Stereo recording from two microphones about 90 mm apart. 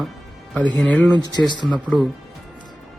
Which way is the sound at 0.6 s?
10° left (ahead or behind).